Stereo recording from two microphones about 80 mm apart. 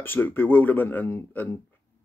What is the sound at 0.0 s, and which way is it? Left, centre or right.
Speech, left.